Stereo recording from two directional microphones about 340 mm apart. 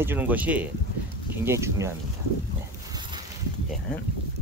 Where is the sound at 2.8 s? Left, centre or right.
Centre.